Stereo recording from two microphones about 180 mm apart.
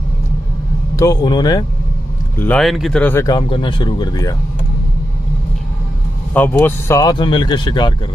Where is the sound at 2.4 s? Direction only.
5° left (ahead or behind).